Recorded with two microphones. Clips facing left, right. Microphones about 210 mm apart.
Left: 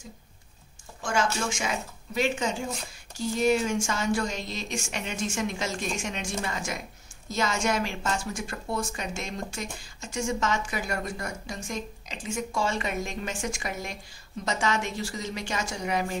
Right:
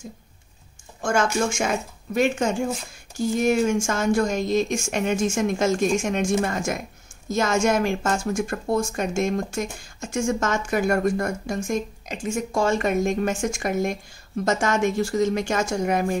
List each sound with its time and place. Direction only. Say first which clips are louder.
1.0 s a woman's voice: right 6 dB; 50° right (ahead or behind)